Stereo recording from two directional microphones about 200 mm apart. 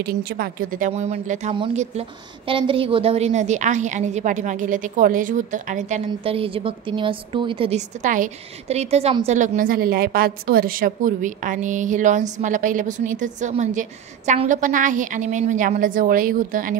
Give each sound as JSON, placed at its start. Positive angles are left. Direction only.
{"t": 0.0, "sound": "a woman's voice", "side_deg": -50}